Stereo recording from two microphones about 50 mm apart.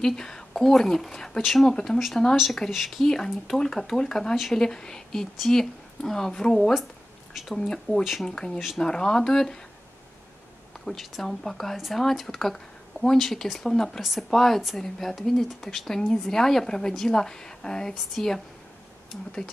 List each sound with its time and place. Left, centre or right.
0.0 s speech: centre
8.0 s speech: centre
8.3 s speech: centre
10.9 s speech: centre